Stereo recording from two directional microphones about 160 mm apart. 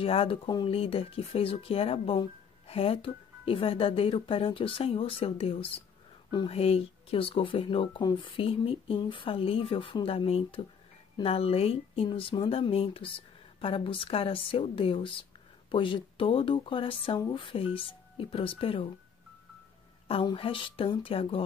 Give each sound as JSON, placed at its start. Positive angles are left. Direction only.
{"t": 0.0, "sound": "speech", "side_deg": 35}
{"t": 20.1, "sound": "speech", "side_deg": 35}